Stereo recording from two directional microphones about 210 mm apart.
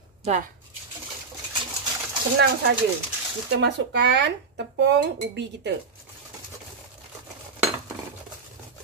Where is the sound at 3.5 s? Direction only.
55° right (ahead or behind).